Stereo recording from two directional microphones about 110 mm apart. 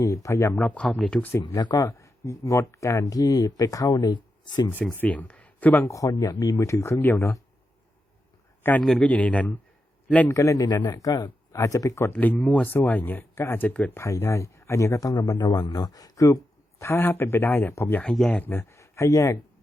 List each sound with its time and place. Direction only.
0.0 s speech: 30° left (ahead or behind)
0.6 s speech: 10° left (ahead or behind)
1.5 s speech: 35° left (ahead or behind)
4.9 s speech: 15° left (ahead or behind)
5.8 s speech: 30° left (ahead or behind)
8.8 s speech: centre (ahead or behind)
9.0 s speech: 15° left (ahead or behind)
10.2 s speech: 30° left (ahead or behind)
12.1 s speech: 15° left (ahead or behind)
14.0 s speech: 25° left (ahead or behind)
18.1 s speech: 5° left (ahead or behind)
18.4 s speech: 25° left (ahead or behind)